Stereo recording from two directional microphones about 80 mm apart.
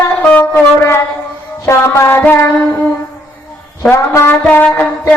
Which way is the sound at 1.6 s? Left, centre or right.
Left.